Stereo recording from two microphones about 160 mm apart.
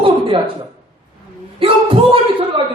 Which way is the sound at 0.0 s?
35° right (ahead or behind).